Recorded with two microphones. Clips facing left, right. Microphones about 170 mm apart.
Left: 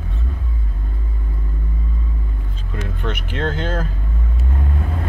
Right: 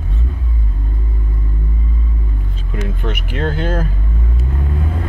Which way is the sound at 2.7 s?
10° right (ahead or behind).